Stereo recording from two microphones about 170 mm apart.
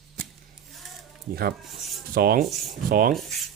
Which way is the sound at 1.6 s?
Centre (ahead or behind).